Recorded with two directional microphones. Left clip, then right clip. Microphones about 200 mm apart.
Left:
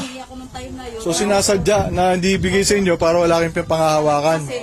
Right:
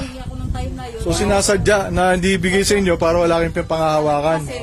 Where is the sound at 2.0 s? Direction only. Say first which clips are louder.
Right 1 dB; centre (ahead or behind).